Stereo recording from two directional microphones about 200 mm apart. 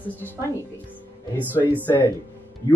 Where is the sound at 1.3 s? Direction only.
10° right (ahead or behind).